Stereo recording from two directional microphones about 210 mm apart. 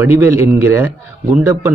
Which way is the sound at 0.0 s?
10° right (ahead or behind).